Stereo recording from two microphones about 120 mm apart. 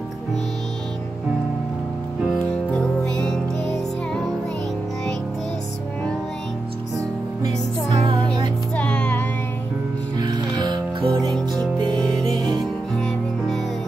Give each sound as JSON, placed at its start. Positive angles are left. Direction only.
{"t": 2.3, "sound": "music", "side_deg": 5}
{"t": 8.0, "sound": "music", "side_deg": -45}
{"t": 8.7, "sound": "music", "side_deg": 10}
{"t": 10.1, "sound": "music", "side_deg": -35}
{"t": 12.4, "sound": "music", "side_deg": -40}